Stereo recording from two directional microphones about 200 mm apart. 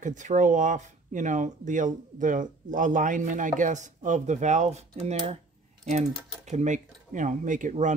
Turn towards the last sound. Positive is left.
turn(degrees=-40)  # may be behind; listen again after turning